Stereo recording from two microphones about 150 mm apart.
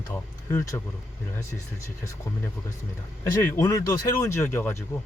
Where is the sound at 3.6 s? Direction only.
20° left (ahead or behind).